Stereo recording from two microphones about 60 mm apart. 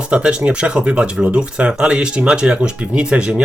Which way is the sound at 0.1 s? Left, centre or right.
Centre.